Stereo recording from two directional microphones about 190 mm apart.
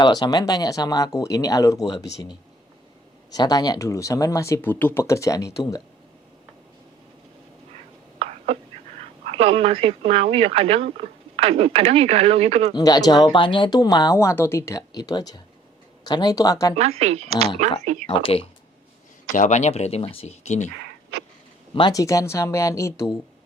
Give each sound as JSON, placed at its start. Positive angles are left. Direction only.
{"t": 0.0, "sound": "speech", "side_deg": 20}
{"t": 3.3, "sound": "speech", "side_deg": 20}
{"t": 8.2, "sound": "whispering", "side_deg": -35}
{"t": 9.0, "sound": "a woman's voice", "side_deg": -30}
{"t": 12.7, "sound": "speech", "side_deg": 20}
{"t": 16.7, "sound": "a woman's voice", "side_deg": -35}
{"t": 18.0, "sound": "speech", "side_deg": 30}
{"t": 19.3, "sound": "speech", "side_deg": 40}
{"t": 20.7, "sound": "a sound", "side_deg": -65}
{"t": 21.8, "sound": "speech", "side_deg": 20}